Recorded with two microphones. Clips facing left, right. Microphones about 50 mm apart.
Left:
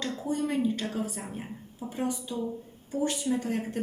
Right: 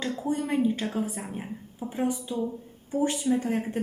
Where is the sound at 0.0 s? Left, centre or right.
Centre.